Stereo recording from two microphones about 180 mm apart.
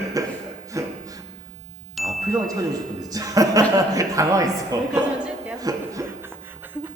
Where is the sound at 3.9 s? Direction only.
15° right (ahead or behind).